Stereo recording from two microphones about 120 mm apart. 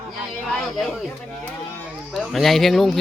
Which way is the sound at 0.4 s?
5° left (ahead or behind).